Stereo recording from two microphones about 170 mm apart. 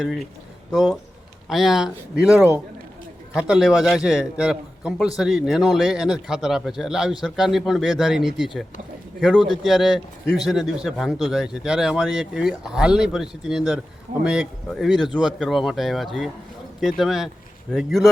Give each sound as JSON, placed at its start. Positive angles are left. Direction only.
{"t": 0.0, "sound": "speech", "side_deg": 0}